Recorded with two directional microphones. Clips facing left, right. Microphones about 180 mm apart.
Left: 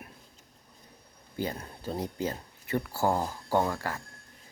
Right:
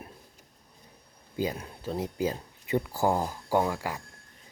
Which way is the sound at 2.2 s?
15° right (ahead or behind).